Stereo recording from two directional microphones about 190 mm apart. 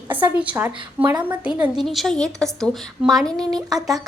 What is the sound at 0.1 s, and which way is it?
A woman's voice, 10° right (ahead or behind).